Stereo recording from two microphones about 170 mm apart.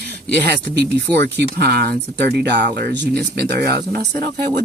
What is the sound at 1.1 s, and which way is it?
Speech, 70° right (ahead or behind).